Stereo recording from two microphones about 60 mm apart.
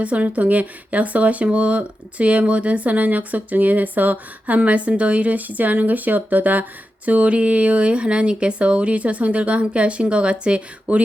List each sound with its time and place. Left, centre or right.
0.0 s speech: right